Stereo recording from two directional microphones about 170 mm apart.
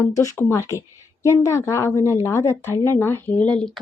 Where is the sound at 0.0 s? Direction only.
20° left (ahead or behind).